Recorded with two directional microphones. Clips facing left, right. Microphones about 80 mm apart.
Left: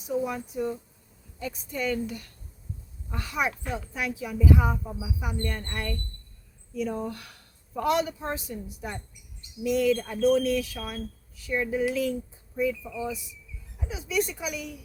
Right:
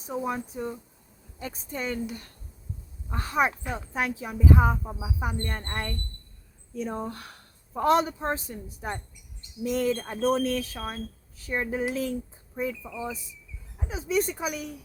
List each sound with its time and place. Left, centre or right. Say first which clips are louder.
0.0 s speech: left 1 dB; right
3.1 s speech: right 4 dB; right